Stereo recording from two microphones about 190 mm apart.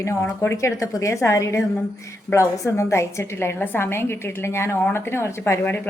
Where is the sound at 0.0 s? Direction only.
15° left (ahead or behind).